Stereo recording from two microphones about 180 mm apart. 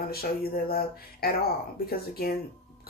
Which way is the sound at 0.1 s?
55° left (ahead or behind).